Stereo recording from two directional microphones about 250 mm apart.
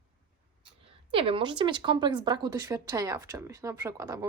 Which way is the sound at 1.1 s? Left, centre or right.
Right.